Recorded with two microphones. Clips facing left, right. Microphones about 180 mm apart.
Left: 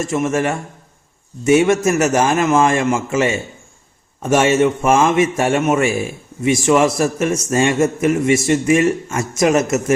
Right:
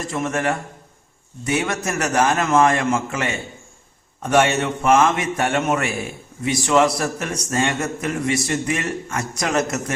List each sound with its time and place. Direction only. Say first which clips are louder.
0.0 s a man's voice: left 5 dB; 25° left (ahead or behind)